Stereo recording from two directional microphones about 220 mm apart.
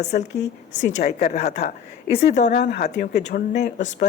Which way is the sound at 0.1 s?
45° left (ahead or behind).